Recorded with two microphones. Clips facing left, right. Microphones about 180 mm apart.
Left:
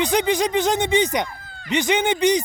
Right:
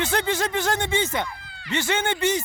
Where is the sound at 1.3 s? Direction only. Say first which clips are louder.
Even; 50° left (ahead or behind).